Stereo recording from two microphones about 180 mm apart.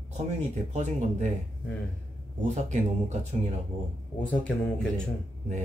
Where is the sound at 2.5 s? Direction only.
40° right (ahead or behind).